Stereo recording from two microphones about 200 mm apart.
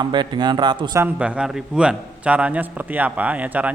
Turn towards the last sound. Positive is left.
turn(degrees=-10)  # may be behind; listen again after turning